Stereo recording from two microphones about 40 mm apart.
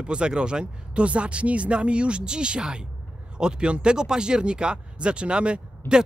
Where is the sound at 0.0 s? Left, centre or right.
Right.